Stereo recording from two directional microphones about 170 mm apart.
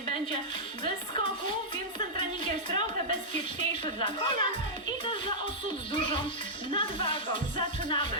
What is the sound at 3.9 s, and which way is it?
Music, 30° left (ahead or behind).